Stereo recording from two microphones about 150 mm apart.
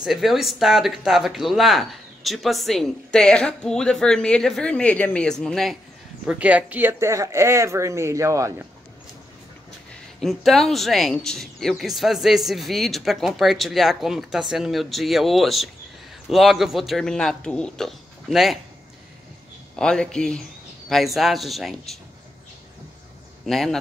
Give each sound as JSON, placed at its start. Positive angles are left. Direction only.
{"t": 0.0, "sound": "speech", "side_deg": 0}
{"t": 6.2, "sound": "speech", "side_deg": -10}
{"t": 10.2, "sound": "speech", "side_deg": 0}
{"t": 19.7, "sound": "speech", "side_deg": 5}
{"t": 23.4, "sound": "speech", "side_deg": 0}